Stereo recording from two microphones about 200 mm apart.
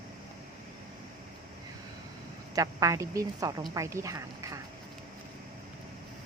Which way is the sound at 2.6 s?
15° right (ahead or behind).